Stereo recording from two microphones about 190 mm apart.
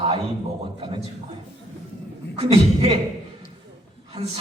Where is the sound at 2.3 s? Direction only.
30° right (ahead or behind).